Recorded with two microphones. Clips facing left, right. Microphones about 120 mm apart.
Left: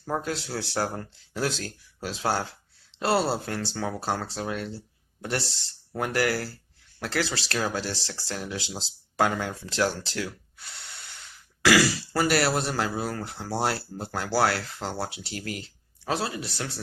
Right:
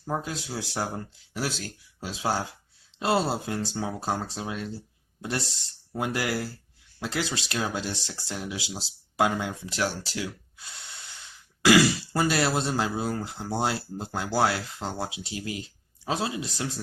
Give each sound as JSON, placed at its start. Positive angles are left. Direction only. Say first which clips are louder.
{"t": 0.2, "sound": "speech", "louder": "left 3 dB", "side_deg": -15}
{"t": 1.4, "sound": "speech", "louder": "left 3 dB", "side_deg": -5}
{"t": 2.0, "sound": "speech", "louder": "left 1 dB", "side_deg": -15}
{"t": 6.0, "sound": "speech", "louder": "left 2 dB", "side_deg": -15}
{"t": 11.6, "sound": "speech", "louder": "right 2 dB", "side_deg": -20}